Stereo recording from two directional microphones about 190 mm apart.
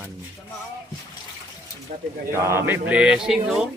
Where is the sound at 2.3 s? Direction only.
10° right (ahead or behind).